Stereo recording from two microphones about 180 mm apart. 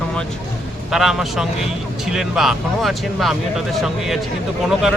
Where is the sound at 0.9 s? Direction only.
Centre (ahead or behind).